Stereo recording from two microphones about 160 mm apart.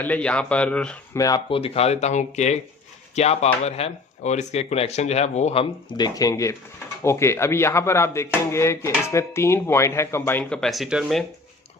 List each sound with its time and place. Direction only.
0.0 s speech: 10° left (ahead or behind)
1.1 s speech: 20° left (ahead or behind)
1.5 s speech: 35° left (ahead or behind)
5.9 s speech: 25° left (ahead or behind); by 11.2 s 5° right (ahead or behind)